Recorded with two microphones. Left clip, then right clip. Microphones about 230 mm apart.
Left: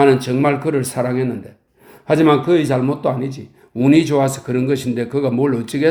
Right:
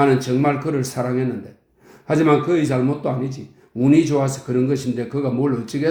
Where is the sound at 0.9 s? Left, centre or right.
Left.